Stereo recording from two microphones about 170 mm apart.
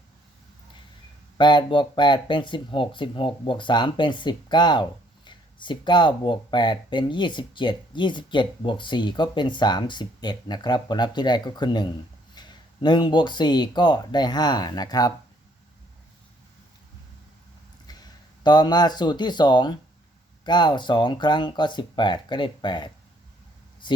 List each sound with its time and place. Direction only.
1.4 s speech: 25° left (ahead or behind)
17.8 s speech: 25° left (ahead or behind)